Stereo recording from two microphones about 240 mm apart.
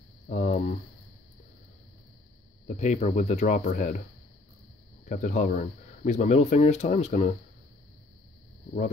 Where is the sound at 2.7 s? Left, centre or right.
Left.